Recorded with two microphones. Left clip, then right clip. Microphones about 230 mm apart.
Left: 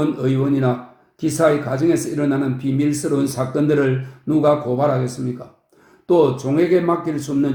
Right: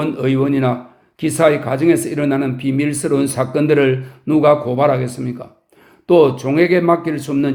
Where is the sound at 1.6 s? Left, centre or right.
Right.